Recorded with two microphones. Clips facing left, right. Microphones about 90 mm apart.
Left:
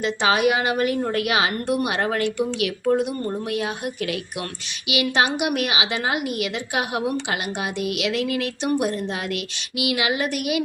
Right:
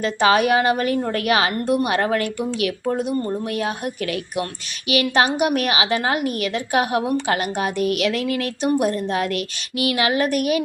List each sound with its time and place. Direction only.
0.0 s a woman's voice: 40° right (ahead or behind)